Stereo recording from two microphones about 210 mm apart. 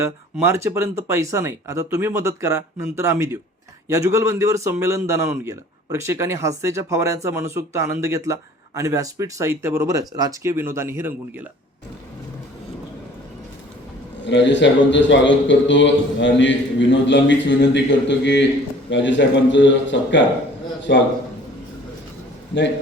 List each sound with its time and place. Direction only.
0.0 s speech: 10° right (ahead or behind)
14.3 s a man's voice: 60° left (ahead or behind)